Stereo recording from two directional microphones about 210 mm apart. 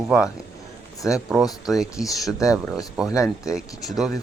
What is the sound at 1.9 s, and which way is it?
Speech, 15° left (ahead or behind).